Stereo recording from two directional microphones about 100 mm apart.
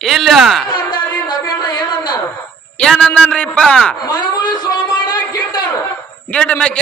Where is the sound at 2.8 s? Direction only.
10° left (ahead or behind).